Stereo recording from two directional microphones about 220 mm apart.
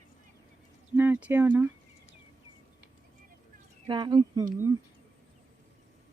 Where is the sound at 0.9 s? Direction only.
10° right (ahead or behind).